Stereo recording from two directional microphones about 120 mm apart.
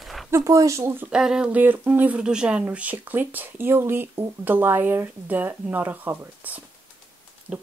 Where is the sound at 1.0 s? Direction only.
5° right (ahead or behind).